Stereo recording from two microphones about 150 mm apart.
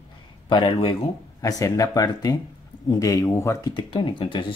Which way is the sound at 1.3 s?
20° left (ahead or behind).